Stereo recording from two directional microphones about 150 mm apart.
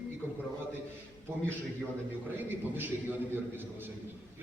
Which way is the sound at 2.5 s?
15° right (ahead or behind).